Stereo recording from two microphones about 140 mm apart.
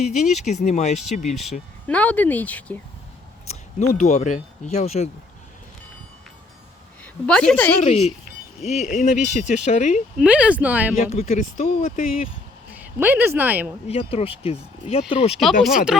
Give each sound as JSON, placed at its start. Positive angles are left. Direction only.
{"t": 0.3, "sound": "speech", "side_deg": 60}
{"t": 1.9, "sound": "speech", "side_deg": 10}
{"t": 3.5, "sound": "speech", "side_deg": 55}
{"t": 7.0, "sound": "a woman's voice", "side_deg": 10}
{"t": 7.9, "sound": "speech", "side_deg": 50}
{"t": 10.2, "sound": "speech", "side_deg": -10}
{"t": 11.1, "sound": "speech", "side_deg": 50}
{"t": 13.0, "sound": "speech", "side_deg": -15}
{"t": 13.8, "sound": "speech", "side_deg": 45}
{"t": 15.3, "sound": "speech", "side_deg": 0}